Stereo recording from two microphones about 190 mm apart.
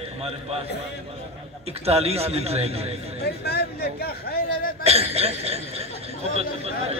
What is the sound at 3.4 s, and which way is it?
Speech, 55° left (ahead or behind).